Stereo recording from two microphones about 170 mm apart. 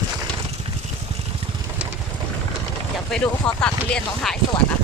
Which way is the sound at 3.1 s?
5° left (ahead or behind).